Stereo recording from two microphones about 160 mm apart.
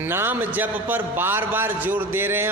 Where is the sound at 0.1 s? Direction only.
15° right (ahead or behind).